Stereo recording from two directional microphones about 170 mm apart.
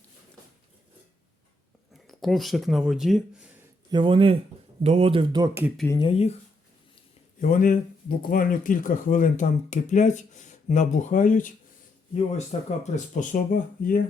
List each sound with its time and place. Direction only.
2.0 s speech: centre (ahead or behind)
3.9 s speech: 30° right (ahead or behind)
6.0 s speech: 35° left (ahead or behind)
7.4 s speech: 50° left (ahead or behind)